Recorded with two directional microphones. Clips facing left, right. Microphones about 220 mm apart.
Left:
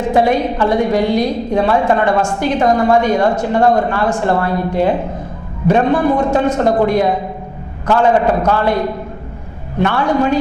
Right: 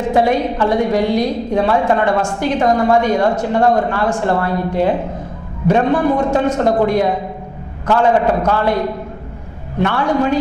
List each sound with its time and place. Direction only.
0.0 s speech: 15° left (ahead or behind)